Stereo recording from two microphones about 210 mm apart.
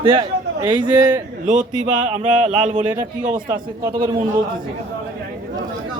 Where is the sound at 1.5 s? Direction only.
35° right (ahead or behind).